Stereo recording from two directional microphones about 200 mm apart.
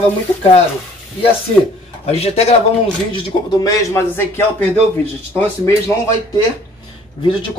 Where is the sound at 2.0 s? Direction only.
30° left (ahead or behind).